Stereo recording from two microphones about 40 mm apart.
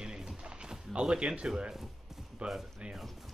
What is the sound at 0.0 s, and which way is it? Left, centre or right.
Music, centre.